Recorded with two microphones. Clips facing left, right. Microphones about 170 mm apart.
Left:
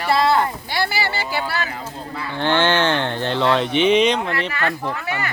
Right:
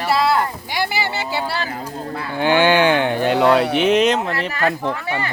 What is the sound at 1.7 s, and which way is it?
Speech, 50° right (ahead or behind).